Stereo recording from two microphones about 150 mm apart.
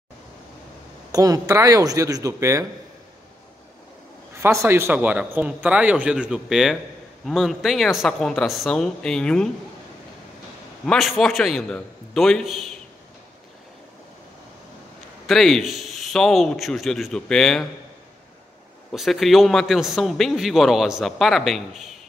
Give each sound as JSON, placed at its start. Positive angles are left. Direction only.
{"t": 1.1, "sound": "speech", "side_deg": -25}
{"t": 4.4, "sound": "a man's voice", "side_deg": -15}
{"t": 10.9, "sound": "a man's voice", "side_deg": 0}
{"t": 15.2, "sound": "a man's voice", "side_deg": 0}
{"t": 18.9, "sound": "a man's voice", "side_deg": 0}